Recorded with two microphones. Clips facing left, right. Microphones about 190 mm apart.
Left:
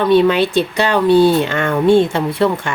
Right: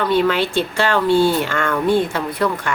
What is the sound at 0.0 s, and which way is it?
Speech, 20° left (ahead or behind).